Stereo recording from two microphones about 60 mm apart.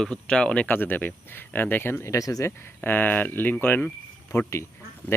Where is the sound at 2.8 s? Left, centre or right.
Left.